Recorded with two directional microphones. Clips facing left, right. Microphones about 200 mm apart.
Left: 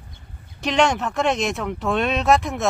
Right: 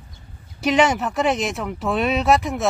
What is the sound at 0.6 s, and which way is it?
Speech, 5° right (ahead or behind).